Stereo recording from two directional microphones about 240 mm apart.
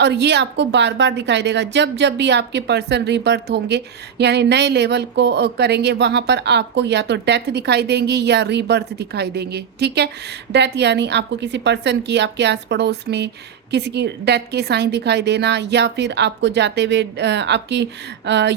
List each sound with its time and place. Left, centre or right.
0.0 s a woman's voice: right